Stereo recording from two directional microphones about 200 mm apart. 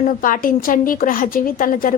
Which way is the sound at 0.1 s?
45° left (ahead or behind).